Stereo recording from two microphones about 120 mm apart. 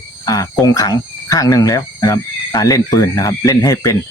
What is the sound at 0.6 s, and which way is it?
Speech, 30° left (ahead or behind).